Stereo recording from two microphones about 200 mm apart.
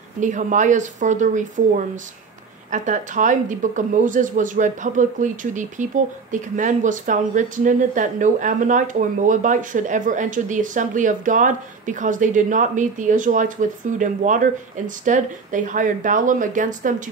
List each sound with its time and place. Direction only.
0.2 s speech: 40° right (ahead or behind)